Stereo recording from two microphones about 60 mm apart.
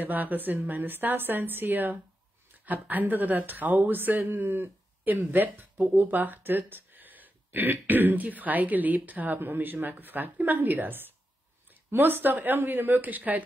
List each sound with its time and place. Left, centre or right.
0.0 s speech: right